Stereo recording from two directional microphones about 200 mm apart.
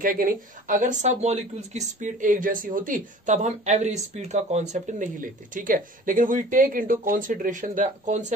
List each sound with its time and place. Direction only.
0.0 s speech: 45° right (ahead or behind)